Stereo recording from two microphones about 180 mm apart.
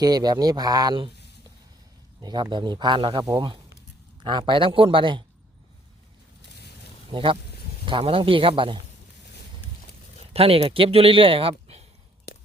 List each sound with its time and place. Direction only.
0.0 s speech: 20° right (ahead or behind)
2.2 s speech: 25° right (ahead or behind)
7.1 s speech: 30° right (ahead or behind)
10.3 s speech: 30° right (ahead or behind)